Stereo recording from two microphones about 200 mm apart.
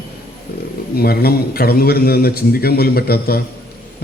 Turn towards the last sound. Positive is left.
turn(degrees=50)  # may be behind; listen again after turning